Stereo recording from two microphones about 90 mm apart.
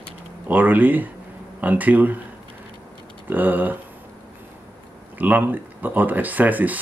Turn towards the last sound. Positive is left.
turn(degrees=-20)  # may be behind; listen again after turning